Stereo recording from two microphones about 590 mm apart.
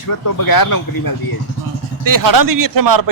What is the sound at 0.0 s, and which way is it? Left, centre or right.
Speech, left.